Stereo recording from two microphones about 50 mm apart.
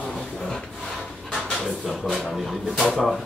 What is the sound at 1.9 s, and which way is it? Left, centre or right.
Speech, centre.